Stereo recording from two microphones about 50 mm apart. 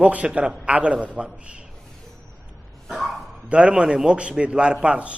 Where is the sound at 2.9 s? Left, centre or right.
Centre.